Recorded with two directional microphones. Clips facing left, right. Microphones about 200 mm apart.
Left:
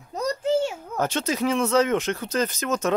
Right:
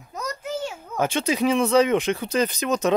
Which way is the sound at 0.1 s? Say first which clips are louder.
Left 7 dB; 30° left (ahead or behind).